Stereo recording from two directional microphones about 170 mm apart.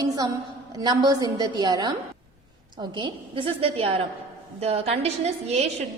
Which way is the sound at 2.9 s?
30° right (ahead or behind).